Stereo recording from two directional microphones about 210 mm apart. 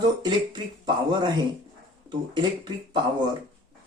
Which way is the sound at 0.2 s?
20° right (ahead or behind).